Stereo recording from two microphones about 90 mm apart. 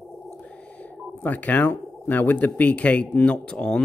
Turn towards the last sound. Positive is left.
turn(degrees=10)  # may be behind; listen again after turning